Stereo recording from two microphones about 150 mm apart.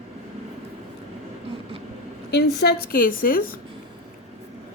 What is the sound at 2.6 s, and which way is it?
Speech, 90° left.